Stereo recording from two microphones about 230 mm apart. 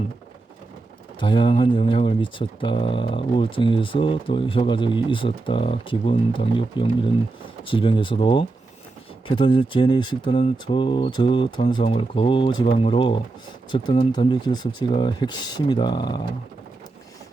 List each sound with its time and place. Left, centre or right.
1.2 s speech: left